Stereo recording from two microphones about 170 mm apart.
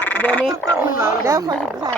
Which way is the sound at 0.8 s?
15° right (ahead or behind).